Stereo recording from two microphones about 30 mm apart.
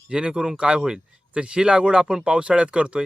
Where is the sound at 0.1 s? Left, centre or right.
Right.